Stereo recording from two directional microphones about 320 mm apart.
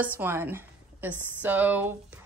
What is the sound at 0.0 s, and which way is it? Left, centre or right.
A woman's voice, centre.